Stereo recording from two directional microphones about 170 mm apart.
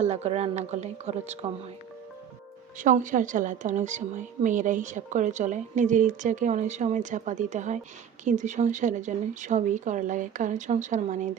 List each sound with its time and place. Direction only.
0.0 s speech: 40° right (ahead or behind)
2.7 s a woman's voice: 50° right (ahead or behind)